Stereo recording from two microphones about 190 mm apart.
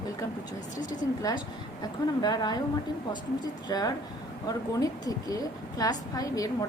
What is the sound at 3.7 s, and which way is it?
A woman's voice, 20° left (ahead or behind).